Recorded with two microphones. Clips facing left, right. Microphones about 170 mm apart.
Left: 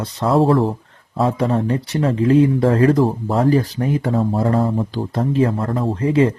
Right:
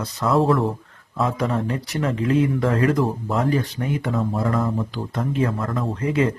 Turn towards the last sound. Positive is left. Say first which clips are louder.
# left 5 dB
turn(degrees=30)  # may be behind; listen again after turning